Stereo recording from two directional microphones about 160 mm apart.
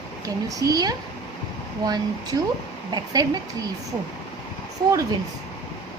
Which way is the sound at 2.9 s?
25° right (ahead or behind).